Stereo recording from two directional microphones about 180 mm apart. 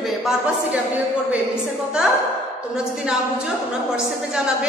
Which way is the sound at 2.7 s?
5° right (ahead or behind).